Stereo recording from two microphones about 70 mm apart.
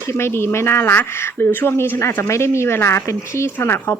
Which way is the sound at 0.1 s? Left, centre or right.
Left.